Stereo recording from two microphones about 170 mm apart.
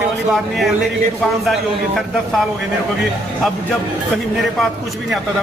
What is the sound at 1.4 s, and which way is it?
Speech, centre (ahead or behind).